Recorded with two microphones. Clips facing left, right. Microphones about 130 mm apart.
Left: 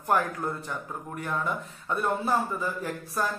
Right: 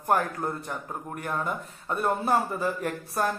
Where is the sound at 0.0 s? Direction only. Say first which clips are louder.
Right 1 dB; 45° right (ahead or behind).